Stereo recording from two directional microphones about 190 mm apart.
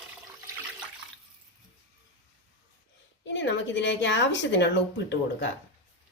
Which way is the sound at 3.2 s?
70° left (ahead or behind).